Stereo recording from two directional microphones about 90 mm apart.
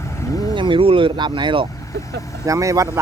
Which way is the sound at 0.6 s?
70° right (ahead or behind).